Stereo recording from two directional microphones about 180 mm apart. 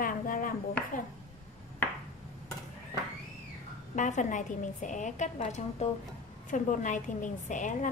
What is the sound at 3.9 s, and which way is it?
A woman's voice, 45° left (ahead or behind).